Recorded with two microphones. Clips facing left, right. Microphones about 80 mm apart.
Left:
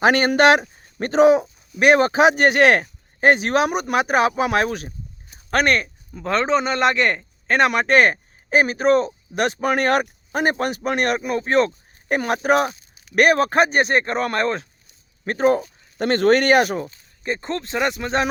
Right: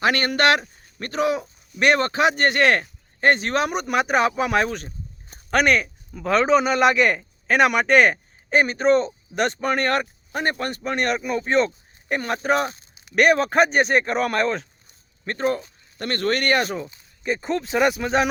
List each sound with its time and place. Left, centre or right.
0.0 s speech: left
10.5 s speech: left
11.2 s speech: centre
13.1 s speech: centre
15.3 s speech: centre
16.2 s speech: left
17.2 s speech: centre